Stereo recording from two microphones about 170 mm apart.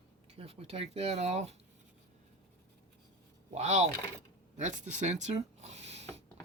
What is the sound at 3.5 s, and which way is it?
Speech, 40° right (ahead or behind).